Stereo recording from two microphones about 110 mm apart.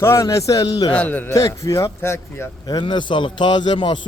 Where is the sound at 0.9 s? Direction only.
15° left (ahead or behind).